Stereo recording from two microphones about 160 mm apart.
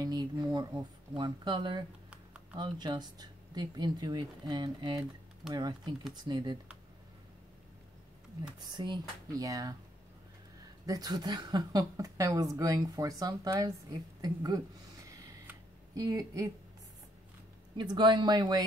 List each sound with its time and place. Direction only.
0.0 s a woman's voice: 25° right (ahead or behind)
8.5 s a woman's voice: 30° right (ahead or behind)
10.9 s a woman's voice: 25° right (ahead or behind)
16.0 s a woman's voice: 20° right (ahead or behind)
17.7 s a woman's voice: 30° right (ahead or behind)